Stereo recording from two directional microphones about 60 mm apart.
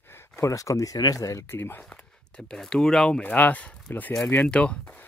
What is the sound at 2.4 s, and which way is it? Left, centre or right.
Speech, centre.